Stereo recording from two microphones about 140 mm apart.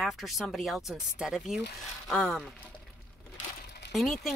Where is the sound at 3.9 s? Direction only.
Centre (ahead or behind).